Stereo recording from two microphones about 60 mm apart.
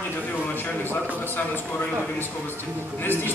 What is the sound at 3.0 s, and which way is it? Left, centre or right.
Speech, left.